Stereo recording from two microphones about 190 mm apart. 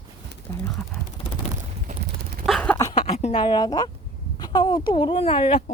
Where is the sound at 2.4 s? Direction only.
5° left (ahead or behind).